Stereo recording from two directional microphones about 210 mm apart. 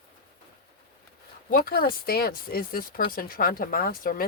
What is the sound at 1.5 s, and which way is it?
Speech, 45° left (ahead or behind).